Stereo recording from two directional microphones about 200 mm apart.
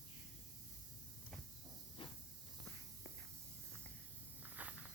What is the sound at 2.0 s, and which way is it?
Hiss, 25° left (ahead or behind).